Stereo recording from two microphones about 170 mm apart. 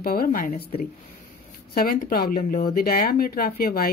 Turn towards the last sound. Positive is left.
turn(degrees=65)  # may be behind; listen again after turning